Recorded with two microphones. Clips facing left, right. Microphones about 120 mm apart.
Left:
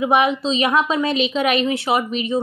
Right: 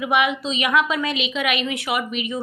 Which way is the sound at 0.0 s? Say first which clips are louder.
Left 4 dB; 35° left (ahead or behind).